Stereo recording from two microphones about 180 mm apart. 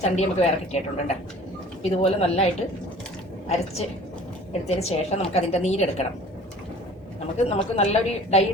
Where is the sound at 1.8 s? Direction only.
35° left (ahead or behind).